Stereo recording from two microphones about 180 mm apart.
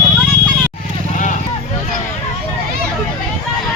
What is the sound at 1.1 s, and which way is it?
Vehicle, 40° left (ahead or behind).